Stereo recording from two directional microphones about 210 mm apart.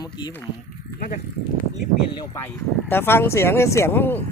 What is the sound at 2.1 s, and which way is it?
Speech, 15° left (ahead or behind).